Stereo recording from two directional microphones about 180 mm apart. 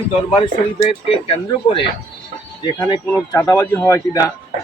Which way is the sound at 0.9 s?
30° left (ahead or behind).